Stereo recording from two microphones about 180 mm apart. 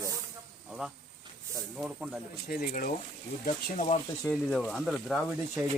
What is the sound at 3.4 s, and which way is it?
Speech, 40° left (ahead or behind).